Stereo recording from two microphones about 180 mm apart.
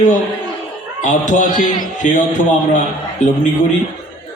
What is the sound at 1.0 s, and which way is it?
A man's voice, 45° left (ahead or behind).